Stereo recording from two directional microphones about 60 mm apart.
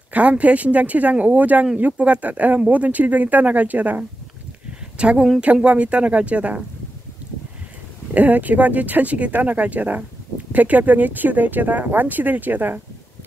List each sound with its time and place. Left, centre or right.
0.1 s a woman's voice: right
8.1 s speech: right